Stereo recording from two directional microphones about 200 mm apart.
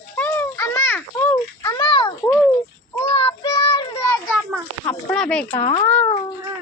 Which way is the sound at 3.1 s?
25° left (ahead or behind).